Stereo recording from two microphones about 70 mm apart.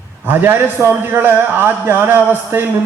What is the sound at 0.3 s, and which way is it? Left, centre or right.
A man's voice, right.